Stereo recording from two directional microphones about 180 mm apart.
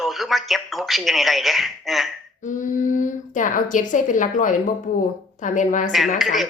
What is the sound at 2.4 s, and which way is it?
Speech, 45° left (ahead or behind).